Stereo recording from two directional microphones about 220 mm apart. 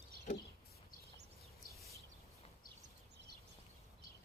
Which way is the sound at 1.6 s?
40° left (ahead or behind).